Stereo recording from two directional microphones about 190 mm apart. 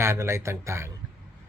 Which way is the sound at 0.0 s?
15° right (ahead or behind).